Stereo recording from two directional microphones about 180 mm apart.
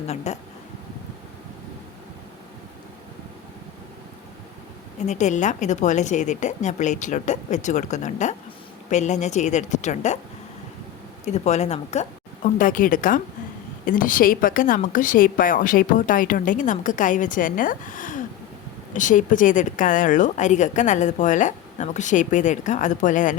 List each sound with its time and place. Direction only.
0.3 s a woman's voice: 40° left (ahead or behind)
5.0 s a woman's voice: 40° left (ahead or behind)
11.3 s a woman's voice: 40° left (ahead or behind)